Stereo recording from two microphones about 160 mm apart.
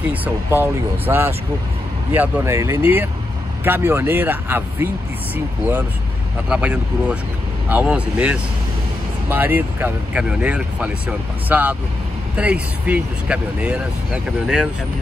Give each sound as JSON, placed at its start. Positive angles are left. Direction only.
{"t": 0.1, "sound": "speech", "side_deg": -10}